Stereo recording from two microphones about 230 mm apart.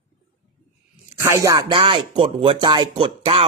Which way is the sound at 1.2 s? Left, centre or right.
Centre.